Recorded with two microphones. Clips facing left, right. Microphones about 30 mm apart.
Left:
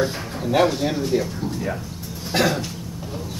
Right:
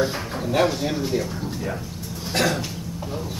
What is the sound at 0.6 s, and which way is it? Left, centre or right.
Speech, centre.